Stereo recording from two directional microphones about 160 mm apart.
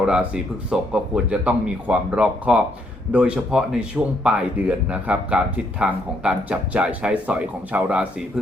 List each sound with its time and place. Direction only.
0.0 s speech: 5° right (ahead or behind)